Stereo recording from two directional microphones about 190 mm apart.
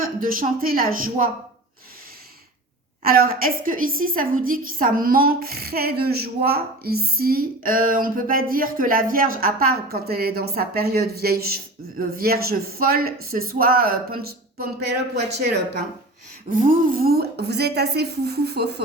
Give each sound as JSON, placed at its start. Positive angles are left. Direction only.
{"t": 0.0, "sound": "a woman's voice", "side_deg": -45}
{"t": 3.0, "sound": "a woman's voice", "side_deg": -50}
{"t": 16.5, "sound": "a woman's voice", "side_deg": -45}